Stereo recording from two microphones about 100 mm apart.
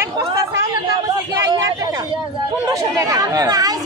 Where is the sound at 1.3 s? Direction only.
40° right (ahead or behind).